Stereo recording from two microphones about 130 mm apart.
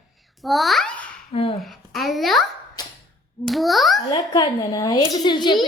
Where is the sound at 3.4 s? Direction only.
Centre (ahead or behind).